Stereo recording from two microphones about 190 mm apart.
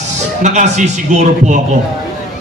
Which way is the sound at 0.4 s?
40° right (ahead or behind).